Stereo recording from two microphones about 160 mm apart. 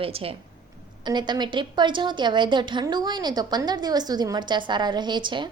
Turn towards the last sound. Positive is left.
turn(degrees=-30)  # may be behind; listen again after turning